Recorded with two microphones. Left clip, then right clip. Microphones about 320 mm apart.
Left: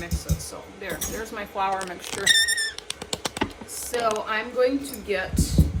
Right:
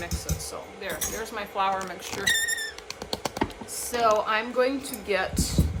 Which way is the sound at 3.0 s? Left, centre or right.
Right.